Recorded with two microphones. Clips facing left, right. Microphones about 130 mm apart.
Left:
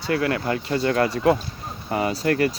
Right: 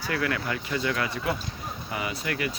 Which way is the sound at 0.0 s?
30° left (ahead or behind).